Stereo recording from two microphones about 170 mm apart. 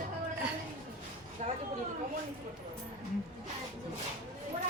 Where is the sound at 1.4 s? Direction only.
45° right (ahead or behind).